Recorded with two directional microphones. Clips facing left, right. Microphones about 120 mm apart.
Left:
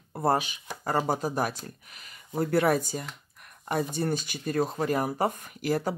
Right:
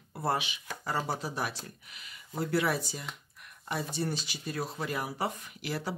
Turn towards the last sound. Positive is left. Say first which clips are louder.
# left 8 dB
turn(degrees=45)  # may be behind; listen again after turning